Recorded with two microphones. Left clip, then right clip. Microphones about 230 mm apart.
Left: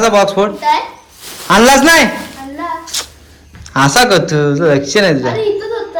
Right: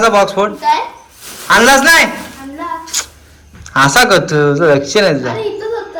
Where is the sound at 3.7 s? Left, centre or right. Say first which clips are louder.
Right 1 dB; centre.